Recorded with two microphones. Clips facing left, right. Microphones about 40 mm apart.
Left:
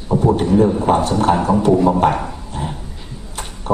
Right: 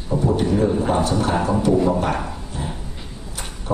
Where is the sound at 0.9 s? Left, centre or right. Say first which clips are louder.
Left 5 dB; left.